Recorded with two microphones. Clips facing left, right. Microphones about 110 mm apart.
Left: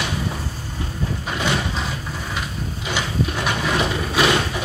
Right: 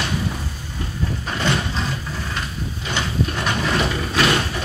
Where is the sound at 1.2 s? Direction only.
10° left (ahead or behind).